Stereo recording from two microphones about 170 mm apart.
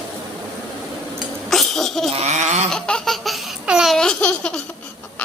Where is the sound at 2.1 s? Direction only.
40° right (ahead or behind).